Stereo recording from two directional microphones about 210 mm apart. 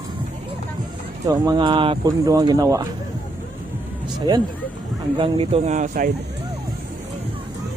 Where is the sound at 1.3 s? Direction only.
20° right (ahead or behind).